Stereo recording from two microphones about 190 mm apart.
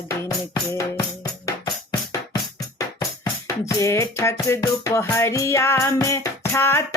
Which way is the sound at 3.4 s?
15° left (ahead or behind).